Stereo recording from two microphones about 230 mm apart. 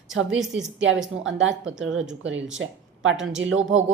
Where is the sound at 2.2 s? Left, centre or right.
Right.